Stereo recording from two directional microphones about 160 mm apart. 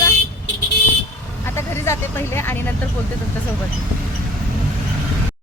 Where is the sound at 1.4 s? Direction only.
15° left (ahead or behind).